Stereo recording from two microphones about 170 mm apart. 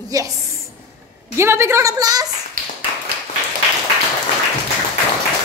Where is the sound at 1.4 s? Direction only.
15° right (ahead or behind).